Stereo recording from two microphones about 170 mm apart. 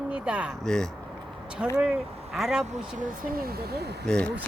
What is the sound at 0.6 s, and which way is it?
A woman's voice, 5° left (ahead or behind).